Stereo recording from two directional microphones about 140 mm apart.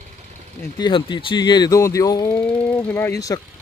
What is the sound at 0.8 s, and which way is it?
Speech, 35° left (ahead or behind).